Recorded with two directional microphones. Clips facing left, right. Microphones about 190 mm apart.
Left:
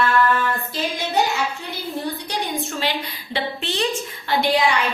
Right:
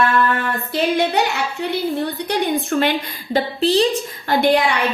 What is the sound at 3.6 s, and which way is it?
Speech, 35° right (ahead or behind).